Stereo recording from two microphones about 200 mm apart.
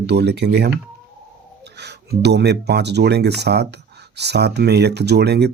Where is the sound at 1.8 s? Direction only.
55° right (ahead or behind).